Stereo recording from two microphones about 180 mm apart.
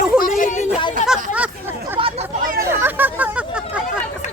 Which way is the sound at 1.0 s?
5° right (ahead or behind).